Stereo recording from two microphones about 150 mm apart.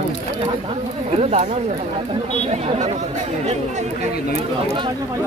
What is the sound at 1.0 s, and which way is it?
Speech, 45° right (ahead or behind).